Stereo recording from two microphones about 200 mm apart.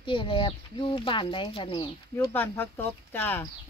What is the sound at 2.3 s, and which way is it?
Speech, 10° left (ahead or behind).